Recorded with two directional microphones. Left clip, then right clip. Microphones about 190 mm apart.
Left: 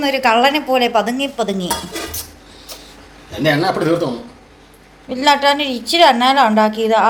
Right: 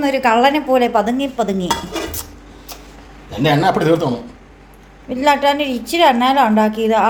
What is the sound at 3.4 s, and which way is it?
Speech, 40° right (ahead or behind).